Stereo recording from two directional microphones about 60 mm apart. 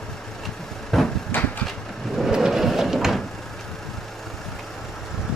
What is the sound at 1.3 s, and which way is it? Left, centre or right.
Vehicle, left.